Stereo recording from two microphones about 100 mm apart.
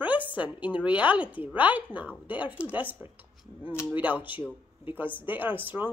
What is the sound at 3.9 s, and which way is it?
Speech, 15° right (ahead or behind).